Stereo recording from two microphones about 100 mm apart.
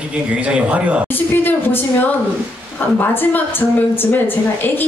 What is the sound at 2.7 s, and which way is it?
A woman's voice, 20° left (ahead or behind).